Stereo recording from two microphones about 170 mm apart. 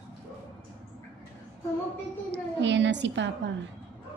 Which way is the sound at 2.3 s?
90° right.